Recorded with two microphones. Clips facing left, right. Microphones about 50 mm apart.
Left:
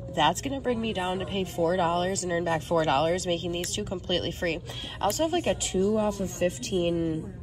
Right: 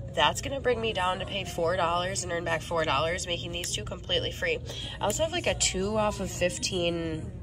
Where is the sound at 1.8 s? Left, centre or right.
Right.